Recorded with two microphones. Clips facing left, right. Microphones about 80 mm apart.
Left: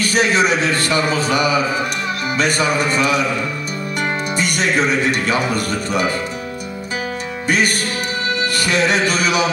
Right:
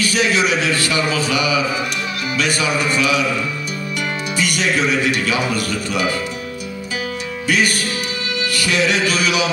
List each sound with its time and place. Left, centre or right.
0.0 s music: left
4.4 s music: left
7.4 s music: left